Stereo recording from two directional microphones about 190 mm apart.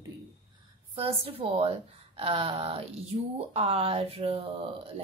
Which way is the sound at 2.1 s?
30° right (ahead or behind).